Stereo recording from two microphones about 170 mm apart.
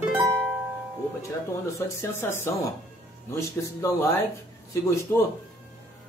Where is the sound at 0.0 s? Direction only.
10° right (ahead or behind).